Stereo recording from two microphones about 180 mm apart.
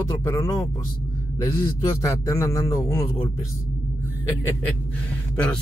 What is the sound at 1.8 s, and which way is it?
A man's voice, 20° left (ahead or behind).